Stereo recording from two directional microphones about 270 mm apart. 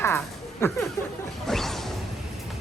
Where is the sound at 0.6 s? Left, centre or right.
Centre.